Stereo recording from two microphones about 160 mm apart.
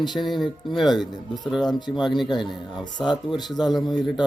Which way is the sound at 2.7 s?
25° left (ahead or behind).